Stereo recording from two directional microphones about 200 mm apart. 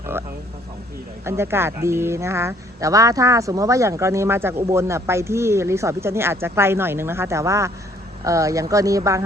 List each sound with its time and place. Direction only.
1.2 s speech: 10° right (ahead or behind)